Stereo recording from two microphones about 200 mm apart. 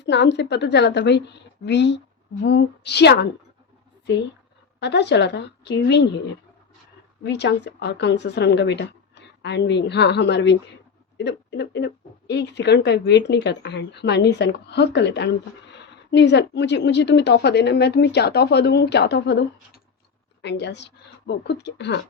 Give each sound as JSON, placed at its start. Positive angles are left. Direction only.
{"t": 0.0, "sound": "speech", "side_deg": 60}
{"t": 4.8, "sound": "speech", "side_deg": 60}
{"t": 7.3, "sound": "speech", "side_deg": 60}